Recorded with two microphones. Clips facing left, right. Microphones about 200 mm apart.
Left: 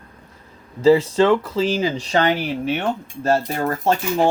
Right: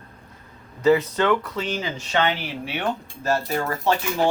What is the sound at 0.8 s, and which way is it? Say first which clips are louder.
Speech: left 5 dB; 30° left (ahead or behind).